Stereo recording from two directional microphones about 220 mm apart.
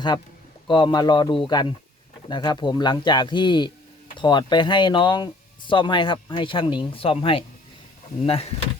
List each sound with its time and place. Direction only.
0.7 s speech: 20° left (ahead or behind)